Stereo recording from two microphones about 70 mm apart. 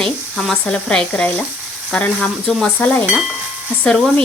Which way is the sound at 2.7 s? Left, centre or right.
Centre.